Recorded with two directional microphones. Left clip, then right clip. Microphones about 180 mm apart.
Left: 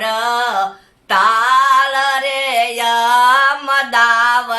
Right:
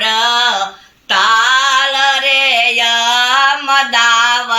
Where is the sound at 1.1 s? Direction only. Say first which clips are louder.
Right 2 dB; 15° left (ahead or behind).